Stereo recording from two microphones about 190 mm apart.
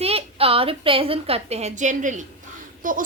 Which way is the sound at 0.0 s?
30° right (ahead or behind).